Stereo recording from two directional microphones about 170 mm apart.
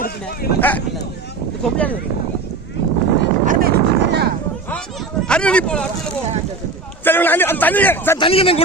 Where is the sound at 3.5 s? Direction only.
60° right (ahead or behind).